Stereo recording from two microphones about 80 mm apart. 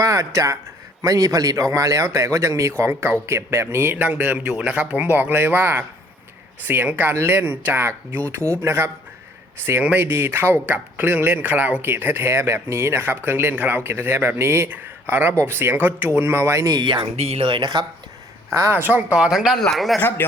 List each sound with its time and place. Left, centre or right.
0.0 s a man's voice: right
9.8 s speech: right
16.7 s speech: right
18.7 s speech: right
19.1 s speech: centre
20.0 s speech: left